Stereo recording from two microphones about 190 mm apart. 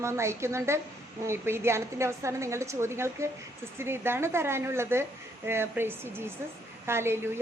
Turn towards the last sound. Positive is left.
turn(degrees=-15)  # may be behind; listen again after turning